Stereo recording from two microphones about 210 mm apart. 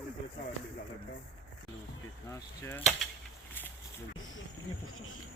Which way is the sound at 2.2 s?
10° left (ahead or behind).